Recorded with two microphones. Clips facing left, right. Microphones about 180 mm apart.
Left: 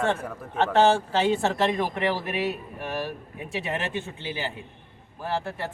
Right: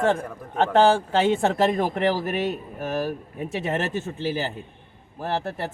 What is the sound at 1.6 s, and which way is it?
A man's voice, 45° right (ahead or behind).